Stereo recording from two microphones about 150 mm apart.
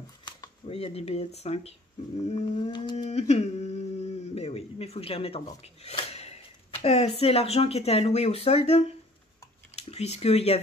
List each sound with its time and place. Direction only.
0.2 s a sound: 30° left (ahead or behind)
0.7 s speech: 45° left (ahead or behind)
2.7 s speech: 30° left (ahead or behind)
3.1 s humming: 45° left (ahead or behind)
4.4 s speech: 40° left (ahead or behind)